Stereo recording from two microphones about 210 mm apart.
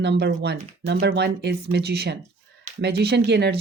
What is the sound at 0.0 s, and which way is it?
Speech, 55° right (ahead or behind).